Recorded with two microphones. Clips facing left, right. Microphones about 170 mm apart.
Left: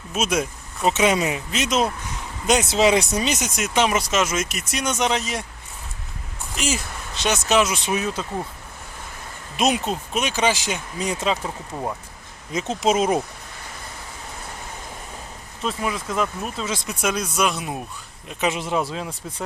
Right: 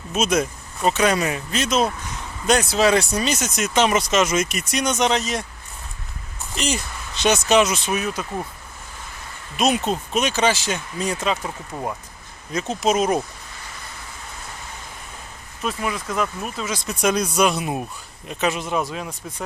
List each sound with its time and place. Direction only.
0.1 s speech: 10° left (ahead or behind)
0.9 s speech: 20° left (ahead or behind)
6.6 s speech: 5° left (ahead or behind)
7.9 s speech: 25° left (ahead or behind)
9.7 s speech: 5° left (ahead or behind)
12.5 s speech: 25° left (ahead or behind)
15.6 s speech: centre (ahead or behind)
18.3 s speech: 20° left (ahead or behind)